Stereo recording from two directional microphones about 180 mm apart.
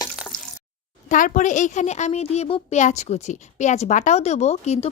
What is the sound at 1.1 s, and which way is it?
A child's voice, 45° left (ahead or behind).